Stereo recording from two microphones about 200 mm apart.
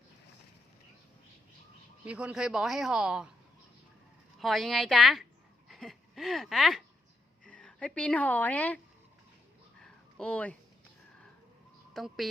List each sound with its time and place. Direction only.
2.0 s a woman's voice: 5° right (ahead or behind)
4.4 s a woman's voice: centre (ahead or behind)
9.8 s a sound: 5° left (ahead or behind)
11.9 s a woman's voice: centre (ahead or behind)